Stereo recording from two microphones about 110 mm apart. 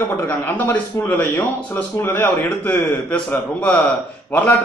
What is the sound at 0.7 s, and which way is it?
A man's voice, 20° left (ahead or behind).